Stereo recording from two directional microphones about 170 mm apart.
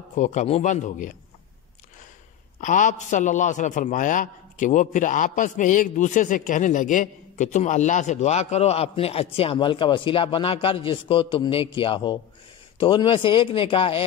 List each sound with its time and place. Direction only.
0.1 s a man's voice: 45° left (ahead or behind)
2.6 s a man's voice: 50° left (ahead or behind); by 14.0 s 30° left (ahead or behind)